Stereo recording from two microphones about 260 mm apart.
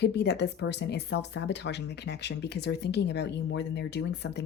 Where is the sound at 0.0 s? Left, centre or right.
Left.